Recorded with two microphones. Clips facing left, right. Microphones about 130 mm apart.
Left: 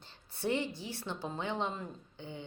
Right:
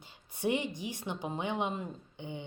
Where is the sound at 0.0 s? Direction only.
15° right (ahead or behind).